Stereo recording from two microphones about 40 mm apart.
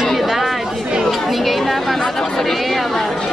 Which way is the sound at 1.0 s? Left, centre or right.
Centre.